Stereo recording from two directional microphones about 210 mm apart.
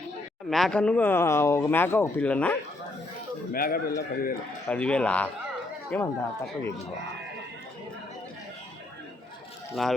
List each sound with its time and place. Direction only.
0.5 s speech: 5° left (ahead or behind)
3.5 s speech: 45° left (ahead or behind)
4.7 s speech: 5° left (ahead or behind)
9.8 s speech: centre (ahead or behind)